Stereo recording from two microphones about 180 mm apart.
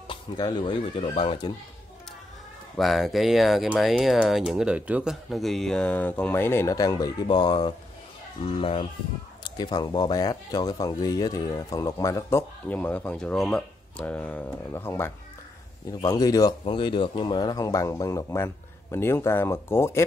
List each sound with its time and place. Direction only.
0.1 s speech: 25° left (ahead or behind)
2.8 s speech: centre (ahead or behind)